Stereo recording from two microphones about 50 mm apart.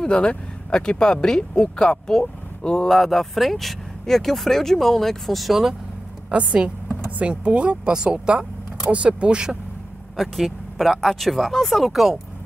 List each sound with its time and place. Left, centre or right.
0.0 s speech: left
2.9 s speech: centre
6.3 s speech: right
10.1 s speech: centre